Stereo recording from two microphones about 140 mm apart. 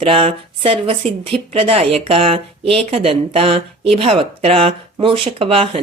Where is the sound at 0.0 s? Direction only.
40° right (ahead or behind).